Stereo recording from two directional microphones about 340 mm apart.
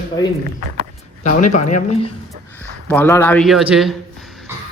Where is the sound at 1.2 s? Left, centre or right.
Left.